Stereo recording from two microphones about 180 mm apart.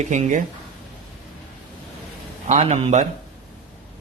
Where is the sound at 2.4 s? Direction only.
40° right (ahead or behind).